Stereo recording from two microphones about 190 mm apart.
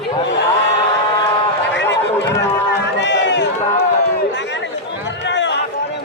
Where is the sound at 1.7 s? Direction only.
70° left (ahead or behind).